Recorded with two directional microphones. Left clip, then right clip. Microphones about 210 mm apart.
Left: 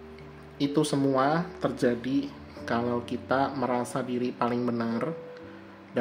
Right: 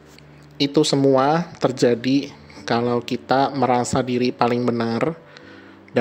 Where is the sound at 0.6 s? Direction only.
40° right (ahead or behind).